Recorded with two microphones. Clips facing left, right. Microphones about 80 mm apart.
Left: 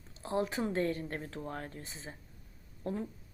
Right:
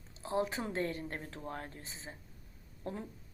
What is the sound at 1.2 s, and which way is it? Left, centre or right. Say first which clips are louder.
Speech: left 3 dB; left.